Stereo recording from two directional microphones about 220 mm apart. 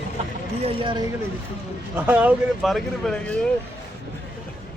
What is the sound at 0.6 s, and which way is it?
Speech, 25° right (ahead or behind).